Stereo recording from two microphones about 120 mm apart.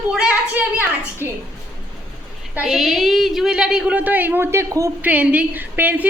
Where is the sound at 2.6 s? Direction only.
Centre (ahead or behind); by 4.9 s 25° right (ahead or behind).